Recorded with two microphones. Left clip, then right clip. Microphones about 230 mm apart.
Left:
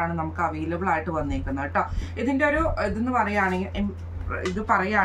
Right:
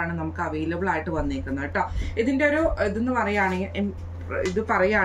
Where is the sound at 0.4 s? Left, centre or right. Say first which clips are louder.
Even; centre.